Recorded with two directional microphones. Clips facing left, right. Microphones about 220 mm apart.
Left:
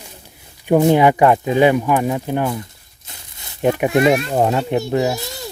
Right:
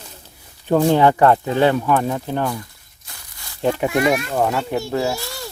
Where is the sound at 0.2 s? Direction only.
15° left (ahead or behind).